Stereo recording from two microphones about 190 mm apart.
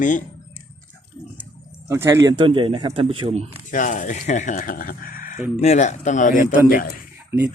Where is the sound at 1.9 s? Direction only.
15° right (ahead or behind); by 3.5 s 30° right (ahead or behind).